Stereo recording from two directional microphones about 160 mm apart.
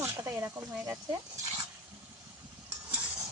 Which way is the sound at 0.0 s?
15° right (ahead or behind).